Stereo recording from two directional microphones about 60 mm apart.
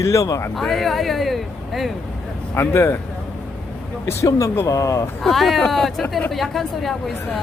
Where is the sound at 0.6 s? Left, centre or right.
Centre.